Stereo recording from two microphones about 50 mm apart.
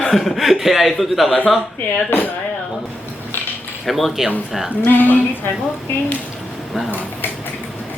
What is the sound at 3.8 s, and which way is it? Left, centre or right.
Speech, centre.